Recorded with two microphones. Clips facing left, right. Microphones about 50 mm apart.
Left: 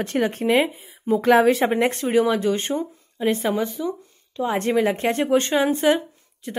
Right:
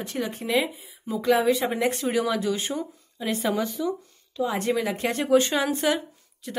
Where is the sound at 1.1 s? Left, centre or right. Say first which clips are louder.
Left 5 dB; left.